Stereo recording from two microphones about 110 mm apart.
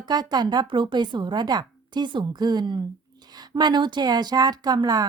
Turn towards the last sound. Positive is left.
turn(degrees=-35)  # may be behind; listen again after turning